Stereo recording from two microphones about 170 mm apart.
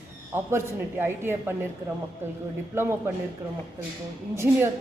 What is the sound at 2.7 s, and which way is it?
Speech, 15° right (ahead or behind).